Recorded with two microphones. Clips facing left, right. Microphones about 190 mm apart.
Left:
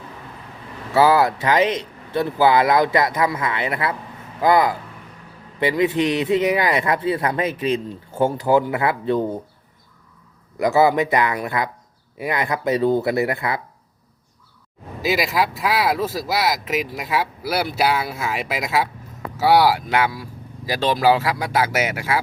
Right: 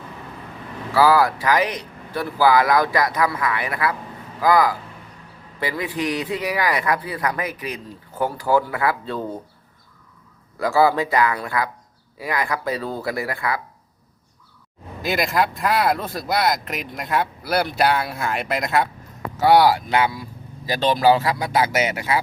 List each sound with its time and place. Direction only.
0.9 s a man's voice: 25° left (ahead or behind)
10.6 s a man's voice: 20° left (ahead or behind)
15.0 s speech: 5° left (ahead or behind)